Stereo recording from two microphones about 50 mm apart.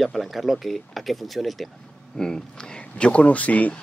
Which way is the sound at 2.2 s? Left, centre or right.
Centre.